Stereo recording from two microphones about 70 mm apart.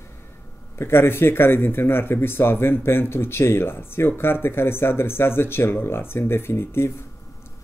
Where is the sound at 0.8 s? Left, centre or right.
Left.